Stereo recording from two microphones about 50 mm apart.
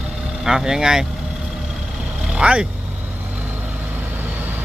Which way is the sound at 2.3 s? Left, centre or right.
Right.